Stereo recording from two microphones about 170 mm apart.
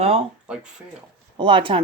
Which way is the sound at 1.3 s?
30° right (ahead or behind).